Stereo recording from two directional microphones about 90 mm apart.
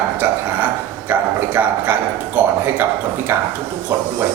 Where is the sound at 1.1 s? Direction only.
20° right (ahead or behind).